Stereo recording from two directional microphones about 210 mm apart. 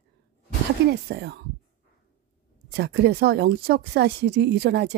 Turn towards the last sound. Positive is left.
turn(degrees=-55)  # may be behind; listen again after turning